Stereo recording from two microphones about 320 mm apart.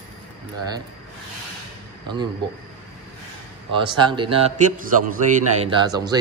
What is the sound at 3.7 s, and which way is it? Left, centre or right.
Speech, centre.